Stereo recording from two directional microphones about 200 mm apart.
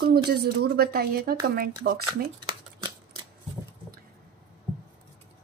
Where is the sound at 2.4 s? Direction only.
25° right (ahead or behind).